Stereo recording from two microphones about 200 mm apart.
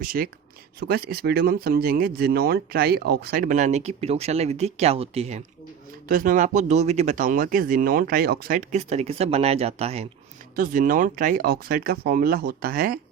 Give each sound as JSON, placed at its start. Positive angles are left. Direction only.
{"t": 0.0, "sound": "speech", "side_deg": -45}
{"t": 6.1, "sound": "speech", "side_deg": -45}
{"t": 10.5, "sound": "speech", "side_deg": -45}